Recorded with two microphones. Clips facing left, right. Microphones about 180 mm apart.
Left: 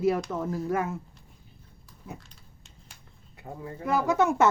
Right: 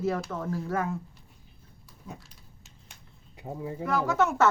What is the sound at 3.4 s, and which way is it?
Speech, 20° right (ahead or behind).